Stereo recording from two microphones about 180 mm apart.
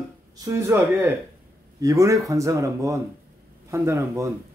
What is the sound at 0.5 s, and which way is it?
Speech, 15° right (ahead or behind).